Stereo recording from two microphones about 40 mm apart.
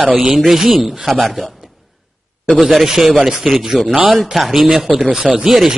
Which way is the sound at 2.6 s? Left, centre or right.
Centre.